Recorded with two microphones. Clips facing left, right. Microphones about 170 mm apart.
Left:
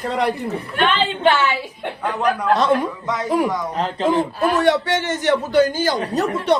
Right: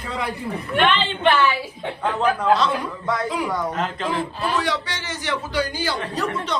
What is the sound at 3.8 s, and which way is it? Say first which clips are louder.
A man's voice: left 6 dB; 45° left (ahead or behind).